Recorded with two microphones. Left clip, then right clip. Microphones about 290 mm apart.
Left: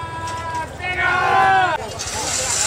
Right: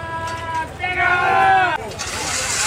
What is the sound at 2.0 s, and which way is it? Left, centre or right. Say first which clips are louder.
Vehicle: even; centre.